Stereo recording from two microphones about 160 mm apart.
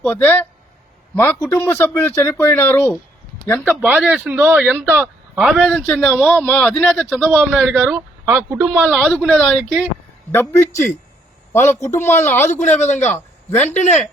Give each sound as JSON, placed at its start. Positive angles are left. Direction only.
{"t": 0.0, "sound": "a man's voice", "side_deg": 10}
{"t": 3.6, "sound": "speech", "side_deg": 0}
{"t": 5.6, "sound": "a man's voice", "side_deg": 5}
{"t": 7.7, "sound": "speech", "side_deg": -15}
{"t": 8.8, "sound": "speech", "side_deg": 5}
{"t": 10.3, "sound": "a man's voice", "side_deg": 15}
{"t": 12.5, "sound": "speech", "side_deg": 45}
{"t": 13.1, "sound": "a sound", "side_deg": 15}
{"t": 13.7, "sound": "speech", "side_deg": 45}